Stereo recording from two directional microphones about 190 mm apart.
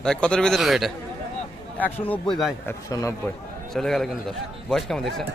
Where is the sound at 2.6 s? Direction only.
15° left (ahead or behind).